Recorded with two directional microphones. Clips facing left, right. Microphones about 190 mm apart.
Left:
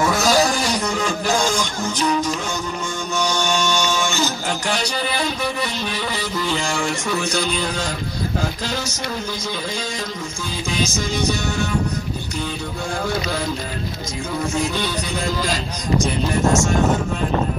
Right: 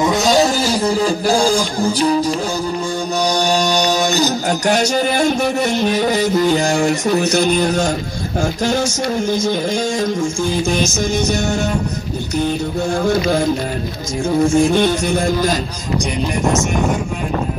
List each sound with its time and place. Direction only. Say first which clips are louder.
0.0 s music: right 4 dB; 20° right (ahead or behind)
3.2 s a sound: right 4 dB; 35° right (ahead or behind)
8.4 s speech: right 11 dB; 45° right (ahead or behind)
13.0 s speech: right 8 dB; 45° right (ahead or behind)